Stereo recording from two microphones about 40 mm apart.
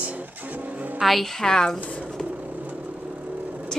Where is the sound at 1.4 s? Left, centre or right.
Centre.